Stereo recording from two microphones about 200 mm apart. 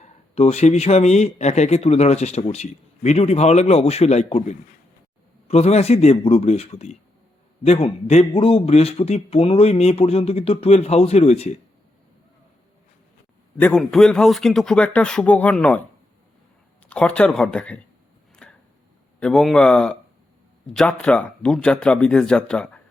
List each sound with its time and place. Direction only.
0.0 s a man's voice: 35° left (ahead or behind)
13.6 s speech: 5° left (ahead or behind)
16.9 s speech: 5° left (ahead or behind)
18.4 s a sound: 5° left (ahead or behind)
19.2 s speech: centre (ahead or behind)